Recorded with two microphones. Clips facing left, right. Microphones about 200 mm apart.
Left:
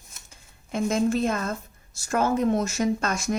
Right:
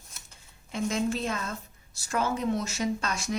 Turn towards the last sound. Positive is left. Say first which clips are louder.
# left 5 dB
turn(degrees=45)  # may be behind; listen again after turning